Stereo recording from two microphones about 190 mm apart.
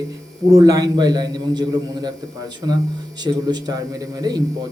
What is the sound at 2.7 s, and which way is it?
A man's voice, 20° right (ahead or behind).